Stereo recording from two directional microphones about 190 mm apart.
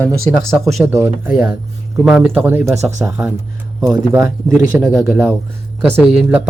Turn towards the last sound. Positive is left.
turn(degrees=-10)  # may be behind; listen again after turning